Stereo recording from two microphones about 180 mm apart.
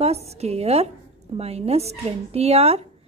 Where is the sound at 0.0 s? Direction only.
35° right (ahead or behind).